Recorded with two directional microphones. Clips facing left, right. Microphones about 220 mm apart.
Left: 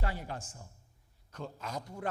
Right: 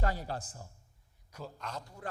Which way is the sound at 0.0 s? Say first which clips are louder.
Right 3 dB; 40° right (ahead or behind).